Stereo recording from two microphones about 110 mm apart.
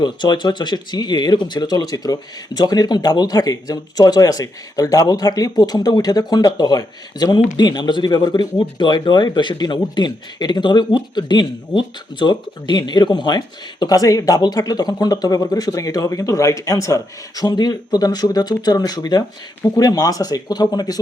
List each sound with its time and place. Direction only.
0.0 s speech: 45° left (ahead or behind)